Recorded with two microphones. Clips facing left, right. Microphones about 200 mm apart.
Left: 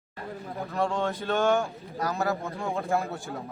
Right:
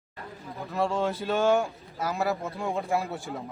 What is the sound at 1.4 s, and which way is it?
Speech, 15° right (ahead or behind).